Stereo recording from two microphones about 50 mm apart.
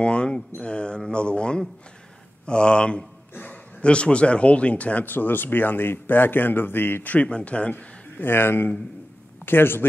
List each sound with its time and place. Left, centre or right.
0.0 s speech: left
5.1 s speech: left
7.2 s speech: left
8.2 s a man's voice: left